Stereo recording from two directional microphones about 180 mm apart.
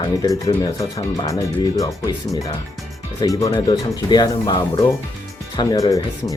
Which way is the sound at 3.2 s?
20° left (ahead or behind).